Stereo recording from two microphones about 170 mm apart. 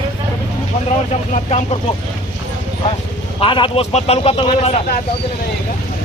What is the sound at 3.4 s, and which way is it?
Speech, 30° left (ahead or behind).